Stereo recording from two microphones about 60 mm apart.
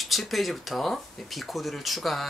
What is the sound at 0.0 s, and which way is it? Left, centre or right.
Speech, centre.